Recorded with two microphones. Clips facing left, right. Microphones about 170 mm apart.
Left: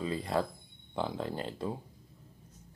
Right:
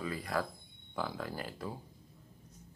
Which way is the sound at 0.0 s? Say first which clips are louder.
Left 4 dB; 25° left (ahead or behind).